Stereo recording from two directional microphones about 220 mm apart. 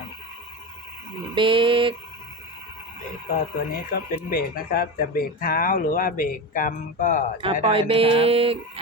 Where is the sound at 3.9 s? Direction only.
40° left (ahead or behind).